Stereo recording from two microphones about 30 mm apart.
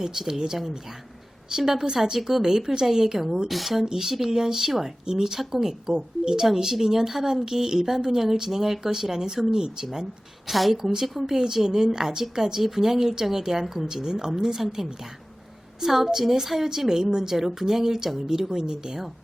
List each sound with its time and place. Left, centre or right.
0.0 s a woman's voice: centre
3.8 s a woman's voice: centre
4.6 s speech: centre
5.0 s a woman's voice: right
10.5 s a woman's voice: centre
16.9 s a woman's voice: right